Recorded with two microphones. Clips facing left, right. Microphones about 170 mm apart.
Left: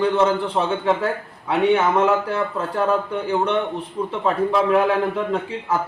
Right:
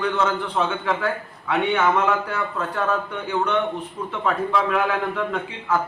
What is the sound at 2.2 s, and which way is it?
A man's voice, 30° left (ahead or behind).